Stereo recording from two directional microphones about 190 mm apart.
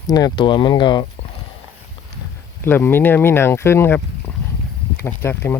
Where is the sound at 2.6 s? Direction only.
10° left (ahead or behind).